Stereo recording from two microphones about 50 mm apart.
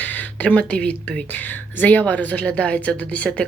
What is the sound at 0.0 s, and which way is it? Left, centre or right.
A woman's voice, left.